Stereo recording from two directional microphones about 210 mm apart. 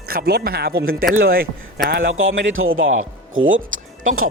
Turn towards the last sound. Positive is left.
turn(degrees=-70)  # may be behind; listen again after turning